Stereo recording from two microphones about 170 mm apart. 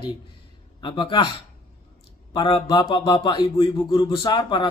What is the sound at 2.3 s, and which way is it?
A man's voice, 30° left (ahead or behind).